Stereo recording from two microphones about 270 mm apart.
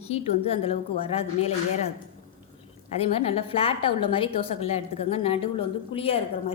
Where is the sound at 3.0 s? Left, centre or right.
Left.